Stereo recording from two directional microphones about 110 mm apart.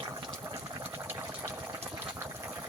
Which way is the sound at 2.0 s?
15° right (ahead or behind).